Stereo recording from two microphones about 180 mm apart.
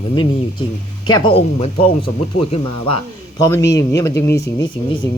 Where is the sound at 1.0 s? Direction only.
25° left (ahead or behind).